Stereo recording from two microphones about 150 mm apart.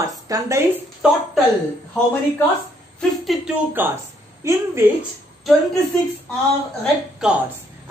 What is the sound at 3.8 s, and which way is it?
A woman's voice, 15° right (ahead or behind).